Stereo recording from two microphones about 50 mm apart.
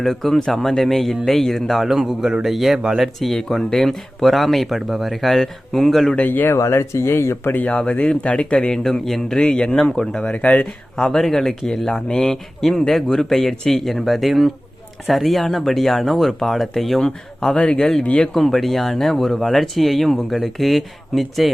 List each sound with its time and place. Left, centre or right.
0.0 s speech: centre
2.0 s speech: centre
2.7 s speech: centre
3.0 s speech: centre
6.1 s speech: left
6.6 s speech: left
7.7 s speech: left
9.4 s speech: centre
10.3 s speech: left
10.9 s speech: centre
17.6 s speech: left
18.3 s speech: centre